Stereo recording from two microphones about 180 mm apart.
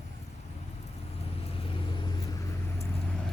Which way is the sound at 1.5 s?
30° left (ahead or behind).